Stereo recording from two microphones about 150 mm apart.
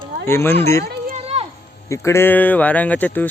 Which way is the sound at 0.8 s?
90° right.